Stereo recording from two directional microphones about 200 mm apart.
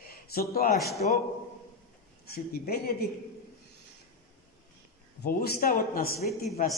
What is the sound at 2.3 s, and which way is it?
Speech, 50° left (ahead or behind).